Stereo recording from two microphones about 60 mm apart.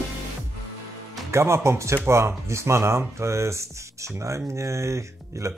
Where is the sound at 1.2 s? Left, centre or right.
Right.